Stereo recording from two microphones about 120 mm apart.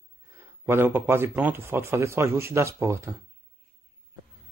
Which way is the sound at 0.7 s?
15° right (ahead or behind).